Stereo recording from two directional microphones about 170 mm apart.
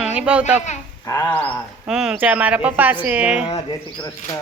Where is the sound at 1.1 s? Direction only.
20° left (ahead or behind).